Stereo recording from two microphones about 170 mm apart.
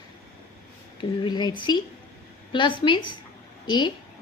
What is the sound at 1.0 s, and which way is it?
Speech, 25° left (ahead or behind).